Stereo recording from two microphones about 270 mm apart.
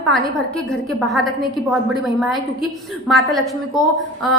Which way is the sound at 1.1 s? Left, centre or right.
Centre.